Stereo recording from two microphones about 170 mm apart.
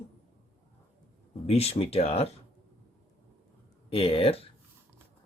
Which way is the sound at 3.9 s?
35° left (ahead or behind).